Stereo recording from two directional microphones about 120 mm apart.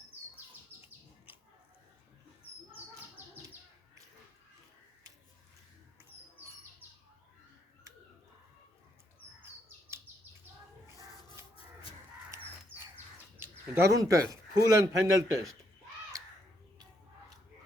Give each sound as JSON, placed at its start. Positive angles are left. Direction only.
{"t": 13.4, "sound": "speech", "side_deg": -25}